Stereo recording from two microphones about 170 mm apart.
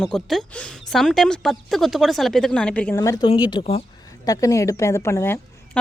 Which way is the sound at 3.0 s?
20° left (ahead or behind).